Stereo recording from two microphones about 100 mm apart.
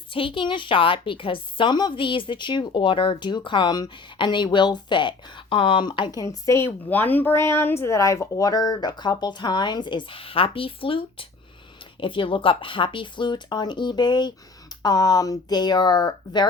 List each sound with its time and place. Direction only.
0.1 s a woman's voice: 65° left (ahead or behind)
6.1 s a woman's voice: 35° left (ahead or behind)
6.8 s a woman's voice: 20° left (ahead or behind); by 16.5 s 45° left (ahead or behind)